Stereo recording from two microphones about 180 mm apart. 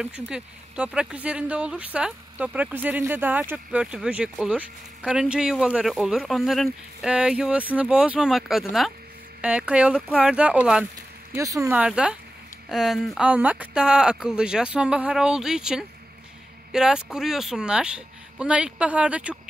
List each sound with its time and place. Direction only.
0.0 s speech: 5° right (ahead or behind)
11.7 s speech: 5° right (ahead or behind)